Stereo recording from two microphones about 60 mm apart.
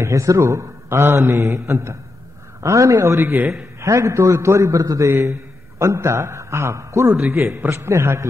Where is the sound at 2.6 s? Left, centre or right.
Right.